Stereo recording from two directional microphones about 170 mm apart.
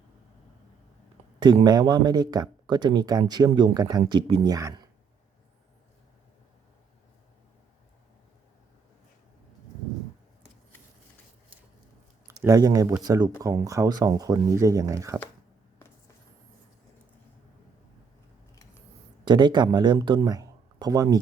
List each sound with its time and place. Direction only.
1.6 s speech: 25° right (ahead or behind)
12.3 s speech: 20° right (ahead or behind)
19.2 s speech: 25° right (ahead or behind)